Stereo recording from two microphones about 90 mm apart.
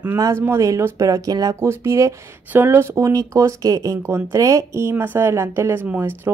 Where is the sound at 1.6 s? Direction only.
30° right (ahead or behind).